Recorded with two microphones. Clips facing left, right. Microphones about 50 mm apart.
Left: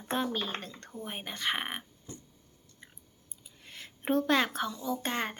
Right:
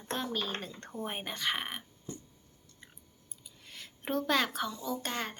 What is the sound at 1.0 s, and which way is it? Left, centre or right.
Speech, centre.